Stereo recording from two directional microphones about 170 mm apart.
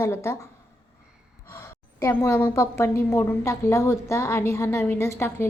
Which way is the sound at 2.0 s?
15° left (ahead or behind).